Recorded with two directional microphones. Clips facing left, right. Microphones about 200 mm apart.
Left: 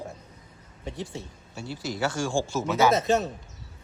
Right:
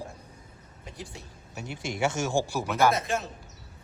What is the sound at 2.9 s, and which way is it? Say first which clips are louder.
Speech: left 7 dB; 25° left (ahead or behind).